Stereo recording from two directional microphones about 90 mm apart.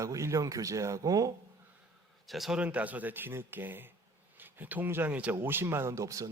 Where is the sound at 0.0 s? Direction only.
35° right (ahead or behind).